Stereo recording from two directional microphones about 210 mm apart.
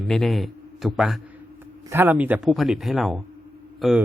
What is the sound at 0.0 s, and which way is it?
A man's voice, centre (ahead or behind).